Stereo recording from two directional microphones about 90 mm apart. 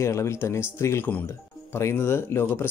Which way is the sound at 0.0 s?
30° left (ahead or behind).